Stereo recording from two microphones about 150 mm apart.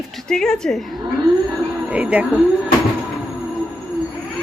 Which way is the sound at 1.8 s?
5° right (ahead or behind).